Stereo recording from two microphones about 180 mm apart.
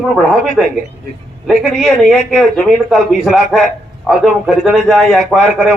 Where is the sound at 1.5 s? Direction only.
Centre (ahead or behind).